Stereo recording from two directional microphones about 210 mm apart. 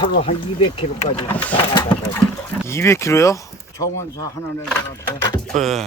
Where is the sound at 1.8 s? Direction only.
20° left (ahead or behind).